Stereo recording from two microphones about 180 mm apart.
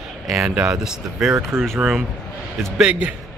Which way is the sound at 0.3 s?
5° right (ahead or behind).